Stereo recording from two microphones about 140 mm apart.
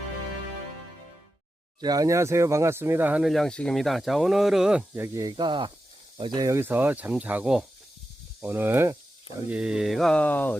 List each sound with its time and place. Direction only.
1.8 s speech: 25° right (ahead or behind)
3.2 s speech: centre (ahead or behind)
5.0 s speech: 25° right (ahead or behind); by 10.6 s 10° left (ahead or behind)